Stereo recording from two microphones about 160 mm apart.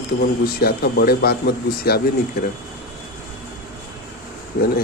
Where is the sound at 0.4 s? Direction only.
75° left (ahead or behind).